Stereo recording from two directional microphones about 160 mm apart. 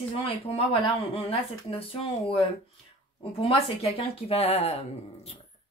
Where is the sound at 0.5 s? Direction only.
35° left (ahead or behind).